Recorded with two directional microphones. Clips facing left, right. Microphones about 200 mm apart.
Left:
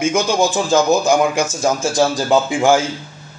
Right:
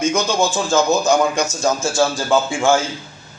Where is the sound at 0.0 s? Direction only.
10° left (ahead or behind).